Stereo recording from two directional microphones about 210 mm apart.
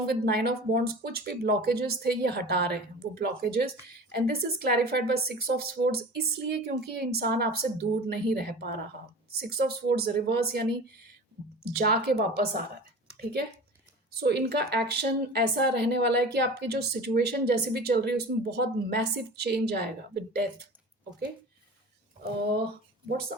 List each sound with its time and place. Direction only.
0.0 s speech: 50° right (ahead or behind)
14.1 s speech: 50° right (ahead or behind)